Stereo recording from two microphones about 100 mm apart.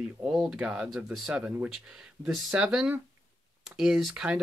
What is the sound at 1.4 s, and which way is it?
Speech, 15° right (ahead or behind).